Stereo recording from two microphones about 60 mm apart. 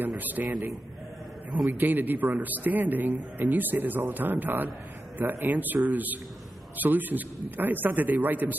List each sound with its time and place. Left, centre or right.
0.2 s a man's voice: right
1.8 s a man's voice: right